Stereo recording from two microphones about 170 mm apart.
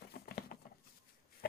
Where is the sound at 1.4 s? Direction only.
65° left (ahead or behind).